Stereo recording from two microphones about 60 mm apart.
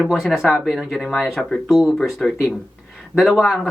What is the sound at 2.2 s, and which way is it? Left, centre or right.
Speech, centre.